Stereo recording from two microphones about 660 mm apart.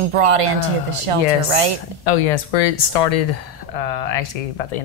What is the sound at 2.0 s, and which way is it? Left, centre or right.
Speech, left.